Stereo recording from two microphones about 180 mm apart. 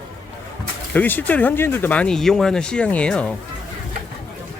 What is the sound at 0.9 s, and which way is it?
Speech, 10° left (ahead or behind).